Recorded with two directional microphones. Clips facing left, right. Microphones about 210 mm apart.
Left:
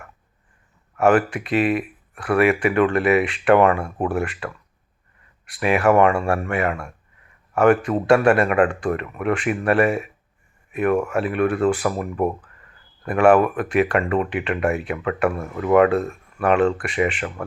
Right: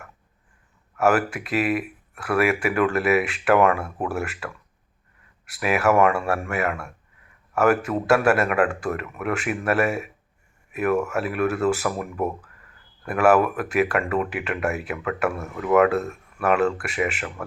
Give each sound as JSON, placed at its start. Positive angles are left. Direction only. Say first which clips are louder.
{"t": 0.9, "sound": "a man's voice", "louder": "left 3 dB", "side_deg": -5}
{"t": 13.1, "sound": "speech", "louder": "left 3 dB", "side_deg": -5}